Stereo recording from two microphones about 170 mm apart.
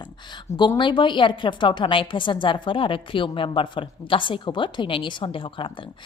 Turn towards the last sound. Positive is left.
turn(degrees=30)  # may be behind; listen again after turning